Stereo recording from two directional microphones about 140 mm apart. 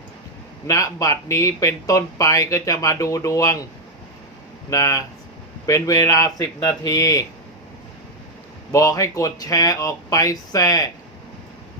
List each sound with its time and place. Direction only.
0.7 s speech: 25° left (ahead or behind)
4.7 s speech: 25° left (ahead or behind)
8.7 s speech: 25° left (ahead or behind)